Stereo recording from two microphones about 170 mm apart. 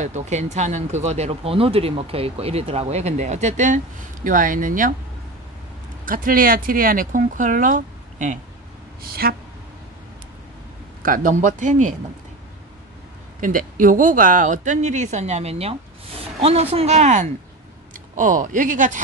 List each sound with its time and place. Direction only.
0.0 s speech: 45° right (ahead or behind)
6.0 s speech: 55° right (ahead or behind)
9.2 s speech: 60° right (ahead or behind)
11.0 s speech: 50° right (ahead or behind)
13.4 s a woman's voice: 55° right (ahead or behind)